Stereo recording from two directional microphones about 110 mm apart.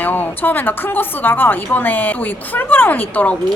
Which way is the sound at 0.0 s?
15° left (ahead or behind).